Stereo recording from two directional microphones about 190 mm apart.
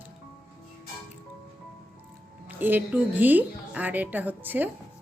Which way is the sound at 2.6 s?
10° right (ahead or behind).